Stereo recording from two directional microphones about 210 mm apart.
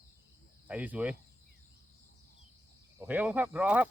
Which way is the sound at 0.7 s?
5° right (ahead or behind).